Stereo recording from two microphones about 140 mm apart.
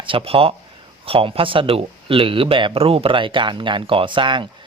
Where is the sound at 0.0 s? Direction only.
40° right (ahead or behind).